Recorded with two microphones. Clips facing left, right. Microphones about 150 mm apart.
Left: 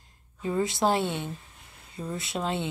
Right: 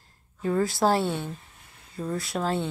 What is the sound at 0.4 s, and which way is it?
Speech, 15° left (ahead or behind).